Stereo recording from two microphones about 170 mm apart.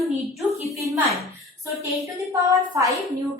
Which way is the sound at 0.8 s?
15° right (ahead or behind).